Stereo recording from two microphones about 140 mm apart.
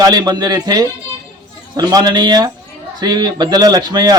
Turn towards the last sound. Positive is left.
turn(degrees=-30)  # may be behind; listen again after turning